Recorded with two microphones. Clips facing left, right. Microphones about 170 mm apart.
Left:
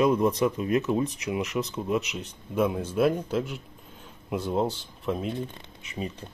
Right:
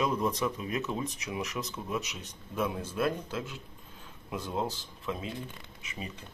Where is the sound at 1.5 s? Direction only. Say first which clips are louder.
Left 8 dB; 25° left (ahead or behind).